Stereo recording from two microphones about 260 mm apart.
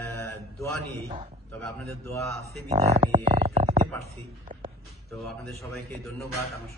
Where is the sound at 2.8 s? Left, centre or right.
Centre.